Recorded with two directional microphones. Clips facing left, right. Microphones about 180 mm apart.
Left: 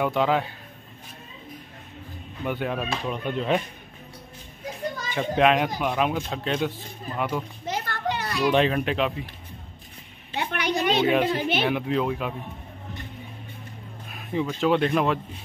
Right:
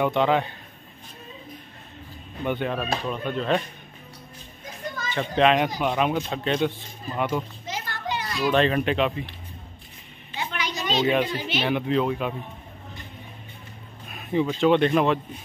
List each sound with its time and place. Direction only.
0.0 s speech: 5° left (ahead or behind)
2.4 s speech: 5° left (ahead or behind)
5.1 s speech: 10° left (ahead or behind)
7.6 s children playing: 55° left (ahead or behind)
8.5 s speech: 10° left (ahead or behind)
10.3 s a sound: 60° left (ahead or behind)
11.3 s speech: 55° left (ahead or behind)
11.6 s speech: centre (ahead or behind)
14.1 s speech: centre (ahead or behind)